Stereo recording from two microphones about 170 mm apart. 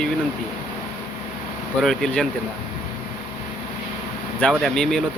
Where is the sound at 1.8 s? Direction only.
Centre (ahead or behind).